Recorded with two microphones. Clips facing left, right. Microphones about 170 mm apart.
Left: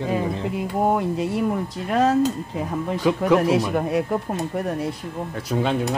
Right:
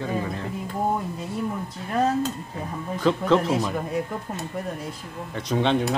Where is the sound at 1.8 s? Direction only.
90° left.